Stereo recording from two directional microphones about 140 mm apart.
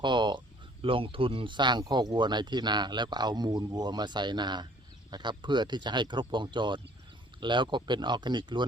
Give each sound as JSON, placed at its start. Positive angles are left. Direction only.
{"t": 0.0, "sound": "speech", "side_deg": -35}